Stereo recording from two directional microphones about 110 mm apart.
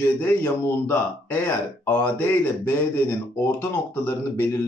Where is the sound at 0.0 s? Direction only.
20° left (ahead or behind).